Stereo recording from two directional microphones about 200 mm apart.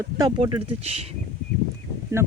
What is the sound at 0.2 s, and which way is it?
Speech, 20° right (ahead or behind).